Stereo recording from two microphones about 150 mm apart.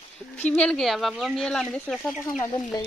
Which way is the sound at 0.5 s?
5° left (ahead or behind).